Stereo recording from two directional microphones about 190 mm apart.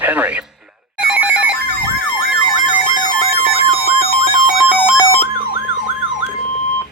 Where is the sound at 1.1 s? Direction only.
5° right (ahead or behind).